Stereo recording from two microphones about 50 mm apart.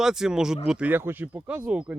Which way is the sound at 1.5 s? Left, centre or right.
Right.